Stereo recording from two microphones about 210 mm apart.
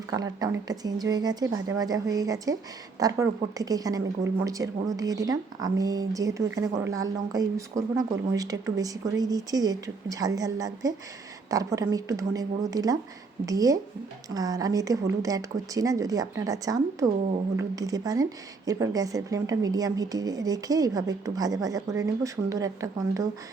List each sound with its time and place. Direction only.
0.1 s speech: 15° right (ahead or behind)